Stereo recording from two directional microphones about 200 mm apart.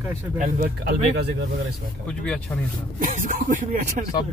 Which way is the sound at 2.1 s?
5° left (ahead or behind).